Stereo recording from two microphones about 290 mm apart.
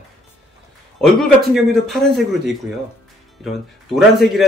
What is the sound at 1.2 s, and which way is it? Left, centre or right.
Speech, centre.